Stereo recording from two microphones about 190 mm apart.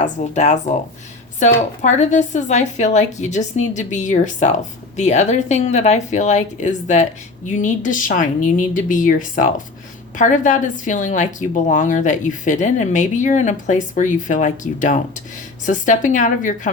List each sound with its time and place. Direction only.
0.0 s a woman's voice: 40° left (ahead or behind)